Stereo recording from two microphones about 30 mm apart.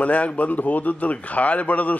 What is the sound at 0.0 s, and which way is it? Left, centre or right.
A man's voice, left.